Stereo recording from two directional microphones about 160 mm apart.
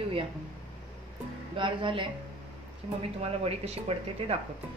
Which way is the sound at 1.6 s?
30° right (ahead or behind).